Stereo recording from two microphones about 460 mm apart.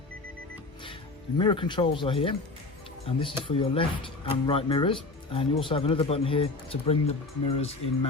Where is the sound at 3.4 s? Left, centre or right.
Centre.